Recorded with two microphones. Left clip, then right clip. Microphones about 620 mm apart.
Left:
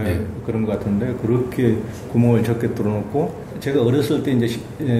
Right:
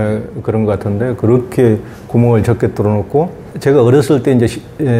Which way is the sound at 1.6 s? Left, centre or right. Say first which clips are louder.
Right 8 dB; right.